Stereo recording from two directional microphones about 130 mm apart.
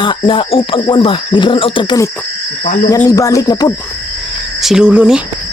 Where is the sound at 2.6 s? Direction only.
80° left.